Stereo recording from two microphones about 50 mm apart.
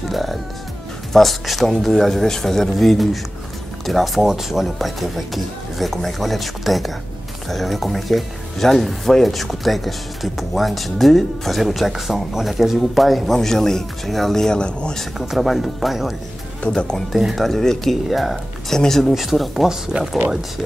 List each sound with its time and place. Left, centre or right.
0.1 s music: centre
1.1 s speech: centre
15.1 s speech: centre
16.6 s speech: centre
17.4 s speech: centre